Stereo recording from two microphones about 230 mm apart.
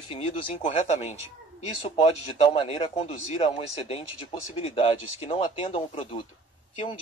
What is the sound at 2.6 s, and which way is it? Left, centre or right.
Speech, left.